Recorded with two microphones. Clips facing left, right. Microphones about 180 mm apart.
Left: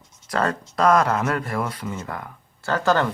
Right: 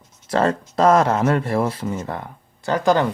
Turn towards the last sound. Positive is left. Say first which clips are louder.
# right 3 dB
turn(degrees=-15)  # may be behind; listen again after turning